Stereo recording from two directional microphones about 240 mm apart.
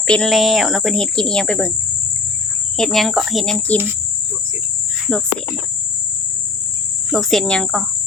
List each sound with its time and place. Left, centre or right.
0.1 s speech: centre
2.7 s speech: centre
5.1 s speech: centre
7.1 s speech: centre